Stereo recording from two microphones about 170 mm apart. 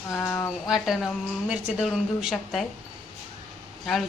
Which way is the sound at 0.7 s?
Centre (ahead or behind).